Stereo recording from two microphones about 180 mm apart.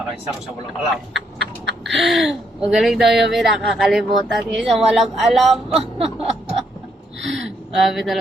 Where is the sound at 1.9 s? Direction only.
Centre (ahead or behind).